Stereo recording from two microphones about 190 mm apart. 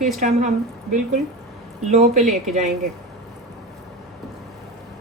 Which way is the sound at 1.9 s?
40° right (ahead or behind).